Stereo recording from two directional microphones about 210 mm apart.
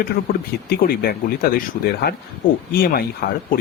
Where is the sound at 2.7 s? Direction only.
45° left (ahead or behind).